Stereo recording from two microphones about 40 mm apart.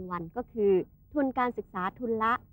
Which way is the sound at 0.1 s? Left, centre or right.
Left.